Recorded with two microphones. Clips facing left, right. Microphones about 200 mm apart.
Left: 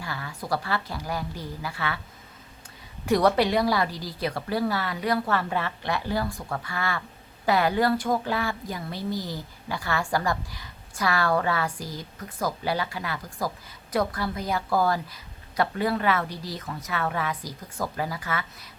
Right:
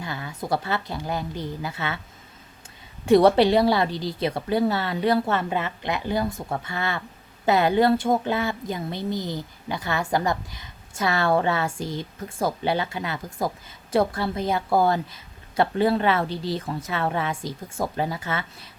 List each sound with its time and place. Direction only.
0.0 s speech: 20° right (ahead or behind)
3.1 s speech: 25° right (ahead or behind)